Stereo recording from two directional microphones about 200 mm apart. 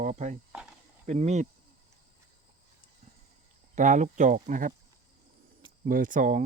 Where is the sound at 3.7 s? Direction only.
40° right (ahead or behind).